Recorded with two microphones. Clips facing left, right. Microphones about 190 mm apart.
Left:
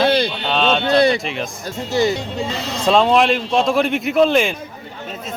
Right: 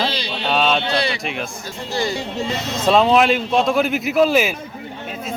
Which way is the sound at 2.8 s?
5° right (ahead or behind).